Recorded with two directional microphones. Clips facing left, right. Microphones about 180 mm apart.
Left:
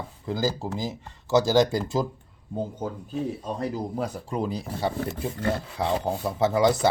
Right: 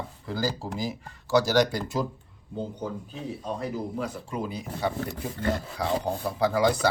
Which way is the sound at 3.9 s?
40° left (ahead or behind).